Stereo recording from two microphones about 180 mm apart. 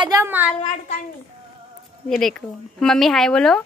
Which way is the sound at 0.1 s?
10° right (ahead or behind).